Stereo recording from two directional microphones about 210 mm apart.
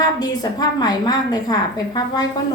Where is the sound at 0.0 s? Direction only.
20° left (ahead or behind).